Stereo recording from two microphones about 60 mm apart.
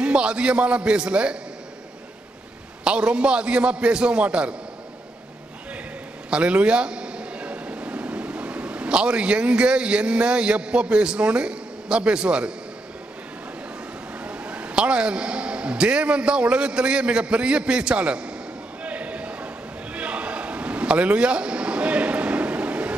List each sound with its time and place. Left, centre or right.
0.0 s a man's voice: centre
2.8 s a man's voice: centre
6.3 s speech: centre
14.2 s a man's voice: right
18.9 s a sound: right